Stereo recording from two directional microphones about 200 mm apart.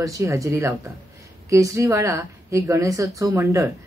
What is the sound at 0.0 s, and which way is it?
Speech, 15° right (ahead or behind).